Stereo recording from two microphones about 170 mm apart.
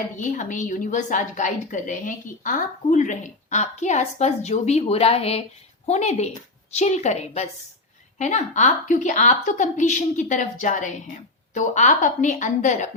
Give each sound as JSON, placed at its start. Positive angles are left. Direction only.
{"t": 0.2, "sound": "a woman's voice", "side_deg": 50}